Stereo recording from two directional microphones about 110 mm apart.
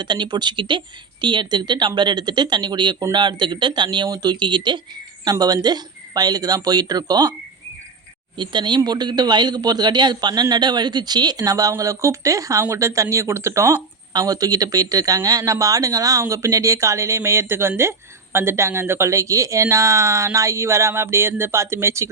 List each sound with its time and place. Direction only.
0.0 s speech: 45° right (ahead or behind)
8.4 s speech: 45° right (ahead or behind); by 22.1 s 25° right (ahead or behind)